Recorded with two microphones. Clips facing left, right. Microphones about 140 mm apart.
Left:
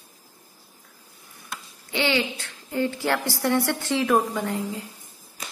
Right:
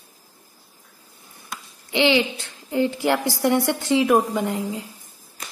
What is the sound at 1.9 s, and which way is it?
A woman's voice, 20° right (ahead or behind).